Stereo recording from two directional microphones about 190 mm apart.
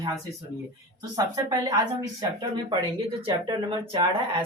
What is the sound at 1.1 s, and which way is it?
Speech, 20° right (ahead or behind).